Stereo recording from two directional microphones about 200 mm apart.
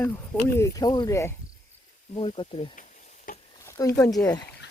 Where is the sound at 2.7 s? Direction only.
40° left (ahead or behind).